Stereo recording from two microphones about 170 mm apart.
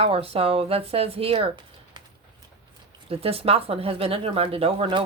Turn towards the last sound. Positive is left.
turn(degrees=-30)  # may be behind; listen again after turning